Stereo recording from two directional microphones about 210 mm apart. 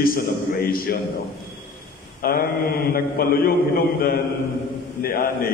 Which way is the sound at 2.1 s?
45° left (ahead or behind).